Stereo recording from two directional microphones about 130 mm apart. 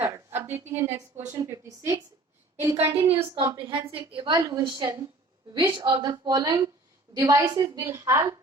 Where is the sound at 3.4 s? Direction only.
35° right (ahead or behind).